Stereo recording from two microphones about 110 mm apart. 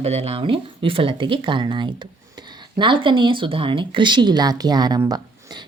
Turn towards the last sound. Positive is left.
turn(degrees=-40)  # may be behind; listen again after turning